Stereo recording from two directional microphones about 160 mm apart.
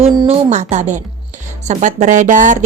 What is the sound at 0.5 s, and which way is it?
A woman's voice, 45° right (ahead or behind).